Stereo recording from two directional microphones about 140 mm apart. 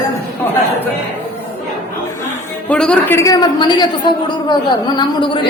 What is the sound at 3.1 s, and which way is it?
A woman's voice, 25° left (ahead or behind).